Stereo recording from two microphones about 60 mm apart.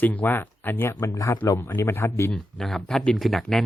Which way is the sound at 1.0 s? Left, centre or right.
Left.